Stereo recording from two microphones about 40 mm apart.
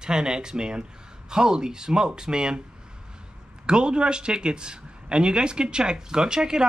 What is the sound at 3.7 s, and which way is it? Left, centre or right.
Speech, right.